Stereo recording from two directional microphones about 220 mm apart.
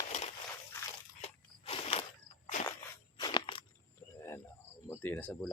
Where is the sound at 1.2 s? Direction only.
25° left (ahead or behind).